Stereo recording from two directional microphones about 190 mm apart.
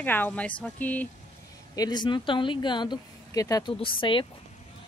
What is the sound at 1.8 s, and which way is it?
Speech, 20° left (ahead or behind).